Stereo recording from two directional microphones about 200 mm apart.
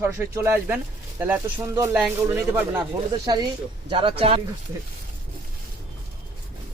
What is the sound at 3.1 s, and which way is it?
Speech, 20° right (ahead or behind).